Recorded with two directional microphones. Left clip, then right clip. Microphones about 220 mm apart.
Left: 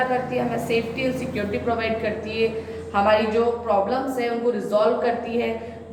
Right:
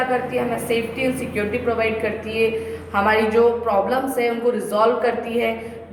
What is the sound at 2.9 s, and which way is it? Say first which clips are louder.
Speech: even; 15° right (ahead or behind).